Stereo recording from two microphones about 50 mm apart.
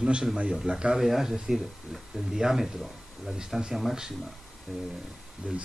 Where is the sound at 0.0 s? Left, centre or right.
Centre.